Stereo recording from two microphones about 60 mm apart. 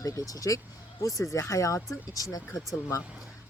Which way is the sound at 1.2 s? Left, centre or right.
Left.